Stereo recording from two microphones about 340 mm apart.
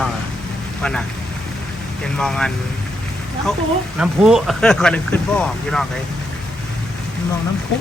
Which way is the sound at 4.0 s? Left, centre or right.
Centre.